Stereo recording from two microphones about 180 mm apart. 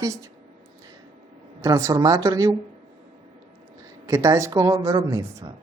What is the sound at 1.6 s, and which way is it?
Speech, 20° right (ahead or behind).